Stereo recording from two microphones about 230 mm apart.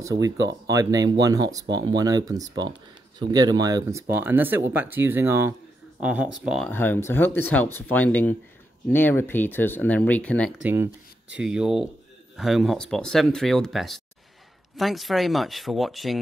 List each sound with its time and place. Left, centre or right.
0.0 s speech: centre
6.7 s speech: centre
10.6 s speech: centre